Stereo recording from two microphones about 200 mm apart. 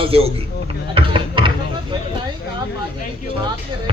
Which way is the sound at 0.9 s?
25° right (ahead or behind).